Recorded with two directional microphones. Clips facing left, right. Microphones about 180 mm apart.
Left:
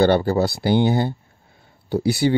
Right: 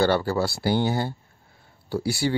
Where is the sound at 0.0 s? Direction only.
20° left (ahead or behind).